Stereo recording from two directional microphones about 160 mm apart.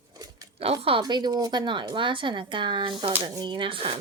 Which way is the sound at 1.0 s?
25° right (ahead or behind).